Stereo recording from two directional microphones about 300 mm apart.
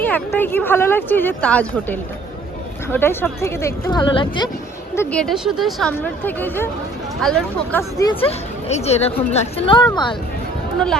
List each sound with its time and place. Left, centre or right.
0.3 s speech: centre
4.9 s speech: centre